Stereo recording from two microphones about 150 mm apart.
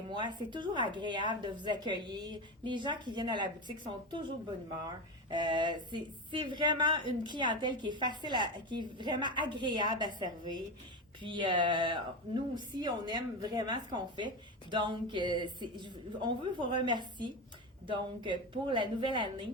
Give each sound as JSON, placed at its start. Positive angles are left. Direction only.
{"t": 0.1, "sound": "speech", "side_deg": -30}